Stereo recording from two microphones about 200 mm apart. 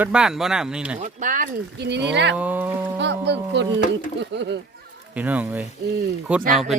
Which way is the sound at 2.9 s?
60° right (ahead or behind).